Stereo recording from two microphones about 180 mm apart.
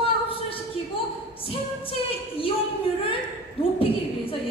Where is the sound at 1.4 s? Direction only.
30° left (ahead or behind).